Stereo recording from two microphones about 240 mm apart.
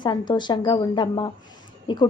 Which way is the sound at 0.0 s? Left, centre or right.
Centre.